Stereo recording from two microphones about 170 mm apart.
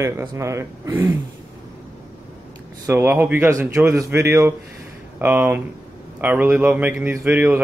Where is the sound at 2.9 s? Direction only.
10° right (ahead or behind).